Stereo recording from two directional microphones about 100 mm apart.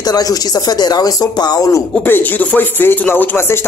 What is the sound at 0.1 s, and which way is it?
Speech, 40° left (ahead or behind).